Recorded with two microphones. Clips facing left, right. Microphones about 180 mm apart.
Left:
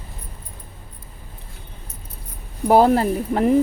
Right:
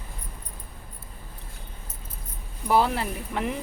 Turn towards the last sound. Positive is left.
turn(degrees=40)  # may be behind; listen again after turning